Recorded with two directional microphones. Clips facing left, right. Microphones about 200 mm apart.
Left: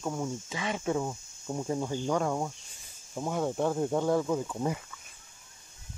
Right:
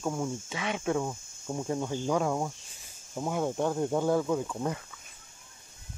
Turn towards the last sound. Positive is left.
turn(degrees=5)  # may be behind; listen again after turning